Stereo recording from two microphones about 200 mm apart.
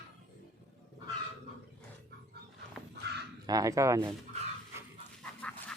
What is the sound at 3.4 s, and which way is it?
Speech, 20° right (ahead or behind).